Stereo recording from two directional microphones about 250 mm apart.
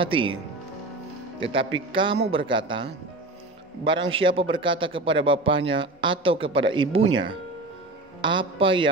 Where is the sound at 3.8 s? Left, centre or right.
Centre.